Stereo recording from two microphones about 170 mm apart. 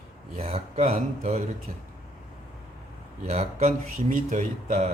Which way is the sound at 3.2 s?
40° right (ahead or behind).